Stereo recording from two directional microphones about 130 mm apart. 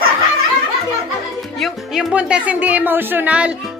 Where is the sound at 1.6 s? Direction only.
5° right (ahead or behind).